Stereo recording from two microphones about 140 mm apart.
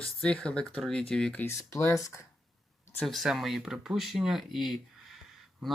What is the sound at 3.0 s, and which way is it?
Speech, centre (ahead or behind).